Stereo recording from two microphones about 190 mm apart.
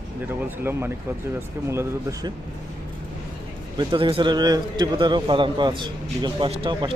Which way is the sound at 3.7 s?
25° right (ahead or behind).